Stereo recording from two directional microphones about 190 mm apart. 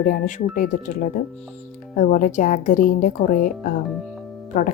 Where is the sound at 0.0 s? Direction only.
45° left (ahead or behind).